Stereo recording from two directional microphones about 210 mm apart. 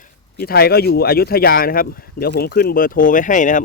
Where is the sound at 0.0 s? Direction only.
45° left (ahead or behind).